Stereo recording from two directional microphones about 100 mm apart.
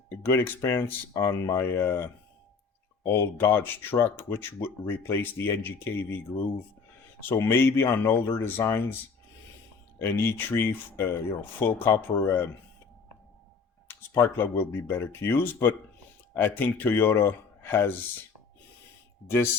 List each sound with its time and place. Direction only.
0.2 s speech: 25° left (ahead or behind)
10.0 s speech: 25° left (ahead or behind)
14.1 s speech: 25° left (ahead or behind)